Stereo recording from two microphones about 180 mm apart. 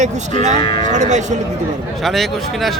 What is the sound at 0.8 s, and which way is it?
Speech, 40° right (ahead or behind).